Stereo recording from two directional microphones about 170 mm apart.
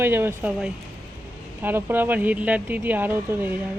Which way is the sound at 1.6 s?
10° right (ahead or behind).